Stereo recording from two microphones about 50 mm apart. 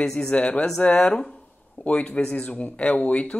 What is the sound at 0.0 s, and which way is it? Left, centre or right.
Speech, centre.